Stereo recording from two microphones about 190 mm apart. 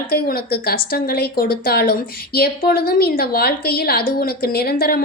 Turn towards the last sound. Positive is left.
turn(degrees=55)  # may be behind; listen again after turning